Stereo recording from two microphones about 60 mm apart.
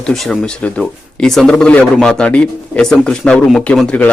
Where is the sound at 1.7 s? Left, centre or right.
Left.